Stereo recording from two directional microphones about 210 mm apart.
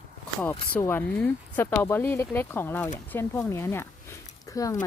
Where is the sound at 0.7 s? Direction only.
10° left (ahead or behind).